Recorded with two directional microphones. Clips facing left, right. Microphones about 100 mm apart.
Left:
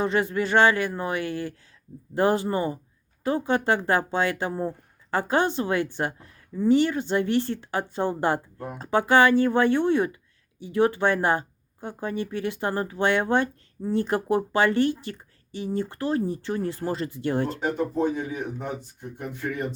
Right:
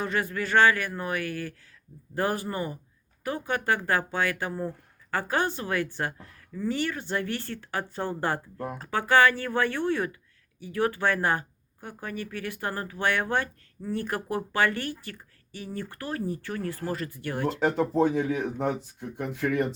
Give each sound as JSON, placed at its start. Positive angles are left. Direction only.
{"t": 0.0, "sound": "speech", "side_deg": 25}
{"t": 17.6, "sound": "speech", "side_deg": -90}